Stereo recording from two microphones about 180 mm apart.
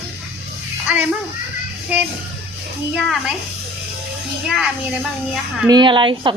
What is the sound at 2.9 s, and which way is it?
Speech, 5° right (ahead or behind).